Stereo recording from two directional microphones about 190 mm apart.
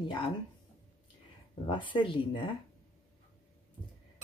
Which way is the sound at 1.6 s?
25° left (ahead or behind).